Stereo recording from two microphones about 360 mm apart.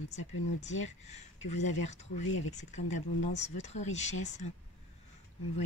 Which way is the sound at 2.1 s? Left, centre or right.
Left.